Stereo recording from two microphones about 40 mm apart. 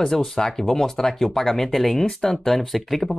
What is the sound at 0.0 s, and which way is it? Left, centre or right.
Speech, centre.